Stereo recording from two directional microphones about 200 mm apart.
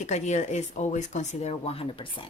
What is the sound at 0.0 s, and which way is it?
A woman's voice, 35° left (ahead or behind).